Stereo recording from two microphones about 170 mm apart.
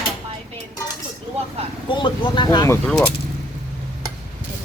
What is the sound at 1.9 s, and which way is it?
Speech, 30° left (ahead or behind).